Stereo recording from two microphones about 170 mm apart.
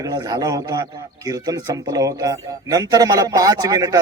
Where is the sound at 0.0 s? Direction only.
20° right (ahead or behind).